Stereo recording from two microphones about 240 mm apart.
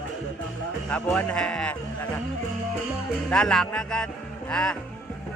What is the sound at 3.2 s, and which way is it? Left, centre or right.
Speech, centre.